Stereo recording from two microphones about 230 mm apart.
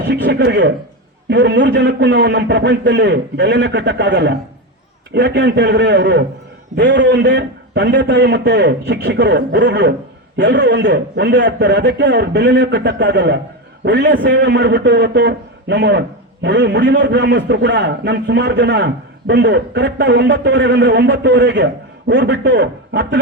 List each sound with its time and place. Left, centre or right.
0.1 s a man's voice: right